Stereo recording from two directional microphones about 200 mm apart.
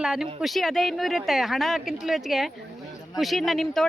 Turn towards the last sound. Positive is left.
turn(degrees=0)  # may be behind; listen again after turning